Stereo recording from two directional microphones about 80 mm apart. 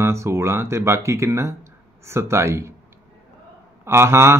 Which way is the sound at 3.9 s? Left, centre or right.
Right.